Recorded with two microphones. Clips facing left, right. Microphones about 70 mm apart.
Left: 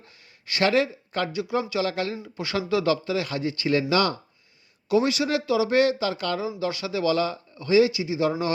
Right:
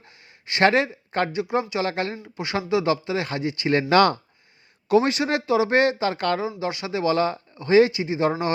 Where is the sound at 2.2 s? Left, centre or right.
Right.